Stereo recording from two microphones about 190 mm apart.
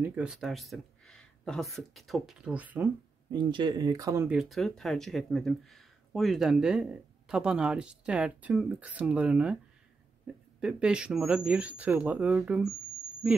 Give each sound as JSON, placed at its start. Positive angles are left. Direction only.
{"t": 0.0, "sound": "speech", "side_deg": -5}
{"t": 3.3, "sound": "speech", "side_deg": -25}
{"t": 4.4, "sound": "speech", "side_deg": 0}